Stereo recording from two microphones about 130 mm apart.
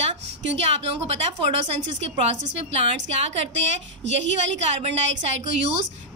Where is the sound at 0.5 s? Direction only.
50° right (ahead or behind).